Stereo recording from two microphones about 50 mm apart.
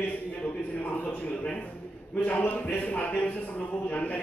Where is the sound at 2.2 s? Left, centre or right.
Left.